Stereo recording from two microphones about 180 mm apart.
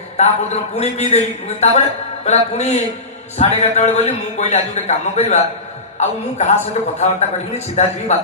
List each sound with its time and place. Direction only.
0.2 s a man's voice: 35° left (ahead or behind)